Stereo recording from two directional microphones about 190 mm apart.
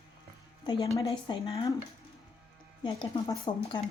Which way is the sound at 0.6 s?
25° left (ahead or behind).